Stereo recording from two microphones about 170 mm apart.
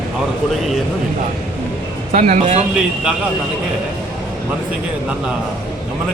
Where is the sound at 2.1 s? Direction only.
45° right (ahead or behind).